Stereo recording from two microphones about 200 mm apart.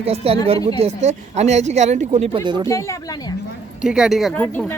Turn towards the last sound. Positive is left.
turn(degrees=10)  # may be behind; listen again after turning